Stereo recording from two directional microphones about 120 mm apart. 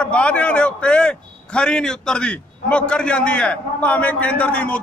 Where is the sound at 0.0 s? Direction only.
10° left (ahead or behind).